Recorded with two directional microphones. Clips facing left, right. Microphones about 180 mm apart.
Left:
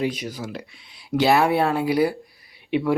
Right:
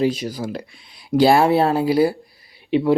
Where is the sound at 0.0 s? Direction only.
35° right (ahead or behind).